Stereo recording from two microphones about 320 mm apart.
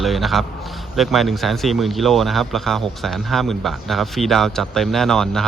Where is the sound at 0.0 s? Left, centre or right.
Centre.